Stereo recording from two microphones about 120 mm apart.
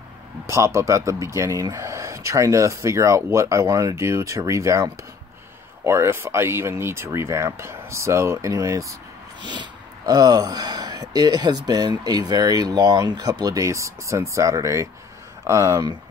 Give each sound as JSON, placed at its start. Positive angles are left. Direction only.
{"t": 0.5, "sound": "speech", "side_deg": -25}
{"t": 9.4, "sound": "speech", "side_deg": -40}